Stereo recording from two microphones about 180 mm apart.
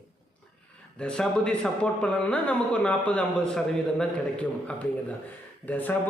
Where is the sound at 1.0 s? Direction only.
5° left (ahead or behind).